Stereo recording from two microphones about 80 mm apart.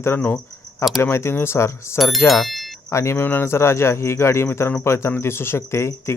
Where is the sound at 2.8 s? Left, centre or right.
Left.